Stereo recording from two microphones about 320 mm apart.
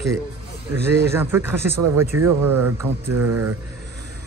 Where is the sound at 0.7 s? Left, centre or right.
Centre.